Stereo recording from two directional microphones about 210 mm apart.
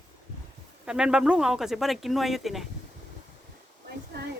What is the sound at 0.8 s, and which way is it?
Speech, 5° right (ahead or behind).